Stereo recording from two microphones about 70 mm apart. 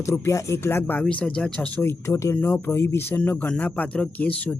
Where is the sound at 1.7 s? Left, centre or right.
Left.